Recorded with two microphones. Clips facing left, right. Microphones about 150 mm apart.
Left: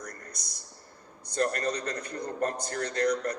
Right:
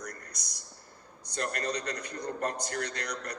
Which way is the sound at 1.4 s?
35° left (ahead or behind).